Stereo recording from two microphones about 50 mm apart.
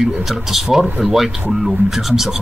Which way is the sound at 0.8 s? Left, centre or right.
Right.